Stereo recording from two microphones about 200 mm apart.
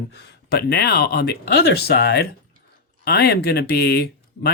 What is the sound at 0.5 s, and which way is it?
Speech, 55° left (ahead or behind).